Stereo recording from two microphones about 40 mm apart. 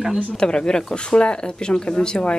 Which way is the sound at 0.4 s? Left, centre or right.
Centre.